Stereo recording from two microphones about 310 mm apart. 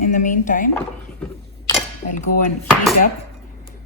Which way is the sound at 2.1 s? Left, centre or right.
Left.